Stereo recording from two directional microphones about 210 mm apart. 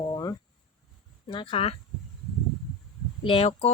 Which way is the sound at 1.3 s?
25° left (ahead or behind).